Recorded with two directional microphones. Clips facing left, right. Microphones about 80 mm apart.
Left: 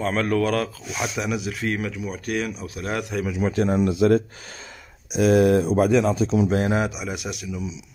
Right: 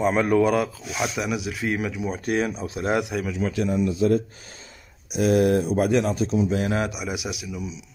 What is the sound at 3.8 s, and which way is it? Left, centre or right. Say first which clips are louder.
Speech: left 2 dB; left.